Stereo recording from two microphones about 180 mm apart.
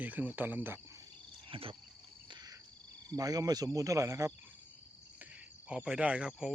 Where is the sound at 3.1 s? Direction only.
20° right (ahead or behind).